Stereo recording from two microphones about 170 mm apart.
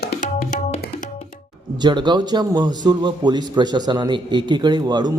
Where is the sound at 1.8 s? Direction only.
25° right (ahead or behind).